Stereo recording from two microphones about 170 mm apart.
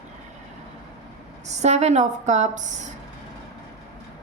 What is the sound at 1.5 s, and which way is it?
Speech, 40° right (ahead or behind).